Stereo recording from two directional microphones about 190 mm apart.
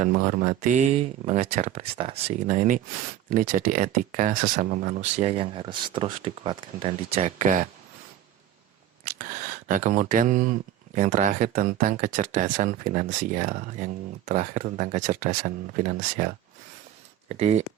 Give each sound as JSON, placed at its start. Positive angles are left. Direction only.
{"t": 0.0, "sound": "speech", "side_deg": -45}
{"t": 9.0, "sound": "speech", "side_deg": -45}